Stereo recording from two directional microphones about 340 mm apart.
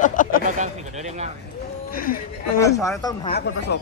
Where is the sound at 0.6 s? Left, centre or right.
Centre.